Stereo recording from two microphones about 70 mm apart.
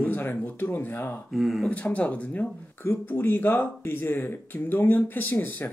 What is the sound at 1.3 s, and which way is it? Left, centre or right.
Speech, centre.